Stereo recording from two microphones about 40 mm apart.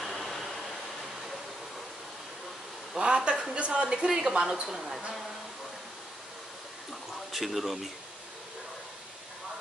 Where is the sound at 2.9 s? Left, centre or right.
Right.